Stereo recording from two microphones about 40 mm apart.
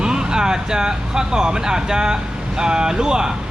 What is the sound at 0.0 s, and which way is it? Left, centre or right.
Speech, centre.